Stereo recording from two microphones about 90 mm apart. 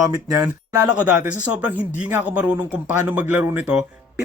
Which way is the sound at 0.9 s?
15° right (ahead or behind).